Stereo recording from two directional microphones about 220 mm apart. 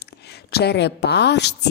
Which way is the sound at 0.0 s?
45° left (ahead or behind).